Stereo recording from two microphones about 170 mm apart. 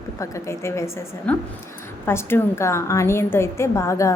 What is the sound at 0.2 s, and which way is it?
A woman's voice, 15° left (ahead or behind).